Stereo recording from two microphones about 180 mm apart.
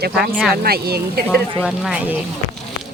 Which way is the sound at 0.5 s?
60° right (ahead or behind).